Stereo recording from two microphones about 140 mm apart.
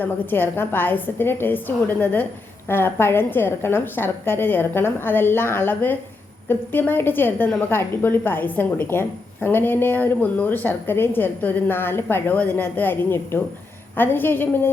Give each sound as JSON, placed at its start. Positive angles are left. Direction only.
{"t": 0.0, "sound": "a woman's voice", "side_deg": 15}